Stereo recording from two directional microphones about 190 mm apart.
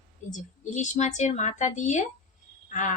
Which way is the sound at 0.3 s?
40° left (ahead or behind).